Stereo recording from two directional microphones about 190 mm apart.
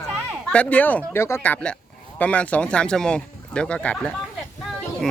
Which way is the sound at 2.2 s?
5° left (ahead or behind).